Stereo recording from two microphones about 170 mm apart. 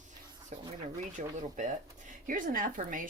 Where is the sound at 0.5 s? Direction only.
45° right (ahead or behind).